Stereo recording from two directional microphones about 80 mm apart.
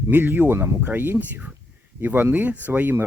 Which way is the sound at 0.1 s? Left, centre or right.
Right.